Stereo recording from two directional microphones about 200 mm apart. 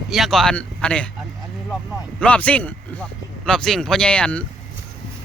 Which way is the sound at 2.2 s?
5° left (ahead or behind).